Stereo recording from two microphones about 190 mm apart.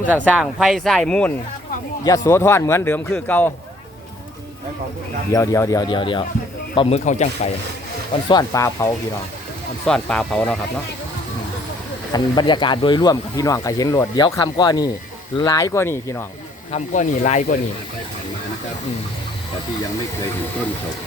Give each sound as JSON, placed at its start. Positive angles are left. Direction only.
{"t": 0.0, "sound": "speech", "side_deg": 10}
{"t": 2.0, "sound": "a man's voice", "side_deg": 15}
{"t": 5.3, "sound": "speech", "side_deg": 15}
{"t": 6.7, "sound": "speech", "side_deg": 35}
{"t": 8.3, "sound": "a man's voice", "side_deg": 20}
{"t": 9.8, "sound": "speech", "side_deg": 5}
{"t": 12.1, "sound": "a man's voice", "side_deg": 25}
{"t": 16.7, "sound": "speech", "side_deg": 40}